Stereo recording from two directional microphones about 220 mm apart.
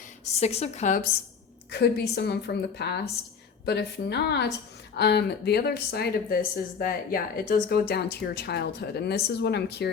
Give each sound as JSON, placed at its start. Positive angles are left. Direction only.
{"t": 0.3, "sound": "a woman's voice", "side_deg": 30}
{"t": 1.7, "sound": "speech", "side_deg": 50}